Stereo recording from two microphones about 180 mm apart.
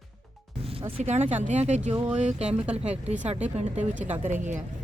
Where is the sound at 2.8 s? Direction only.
35° right (ahead or behind).